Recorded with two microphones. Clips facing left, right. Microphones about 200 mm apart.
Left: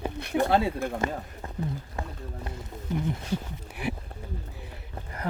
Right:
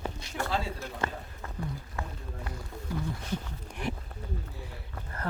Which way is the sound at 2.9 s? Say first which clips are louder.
Left 5 dB; 20° left (ahead or behind).